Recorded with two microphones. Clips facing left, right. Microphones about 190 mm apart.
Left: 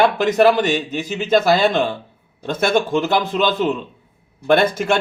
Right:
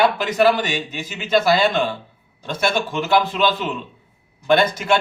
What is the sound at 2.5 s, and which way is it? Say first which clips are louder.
Speech: left 5 dB; 45° left (ahead or behind).